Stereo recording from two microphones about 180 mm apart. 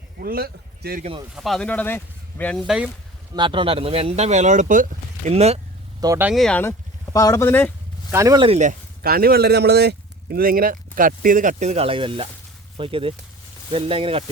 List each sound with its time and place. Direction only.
0.2 s speech: 55° right (ahead or behind)
1.4 s speech: centre (ahead or behind)
2.6 s speech: 5° right (ahead or behind)
3.3 s speech: 25° right (ahead or behind)
6.0 s speech: 20° right (ahead or behind)
6.2 s speech: centre (ahead or behind)
8.1 s speech: 20° right (ahead or behind)
9.0 s speech: 55° right (ahead or behind); by 14.3 s 30° right (ahead or behind)